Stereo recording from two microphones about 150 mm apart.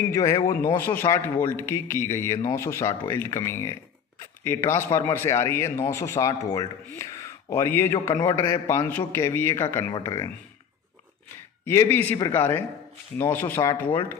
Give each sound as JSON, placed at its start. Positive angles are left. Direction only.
{"t": 0.1, "sound": "a man's voice", "side_deg": 20}
{"t": 11.6, "sound": "a man's voice", "side_deg": 15}